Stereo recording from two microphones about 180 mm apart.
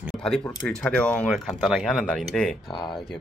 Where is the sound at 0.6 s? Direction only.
5° left (ahead or behind).